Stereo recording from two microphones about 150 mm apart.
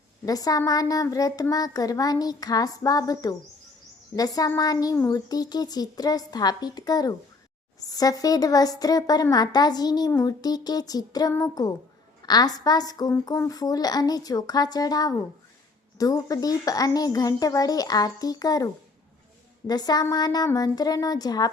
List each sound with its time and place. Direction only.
0.3 s a child's voice: 25° left (ahead or behind)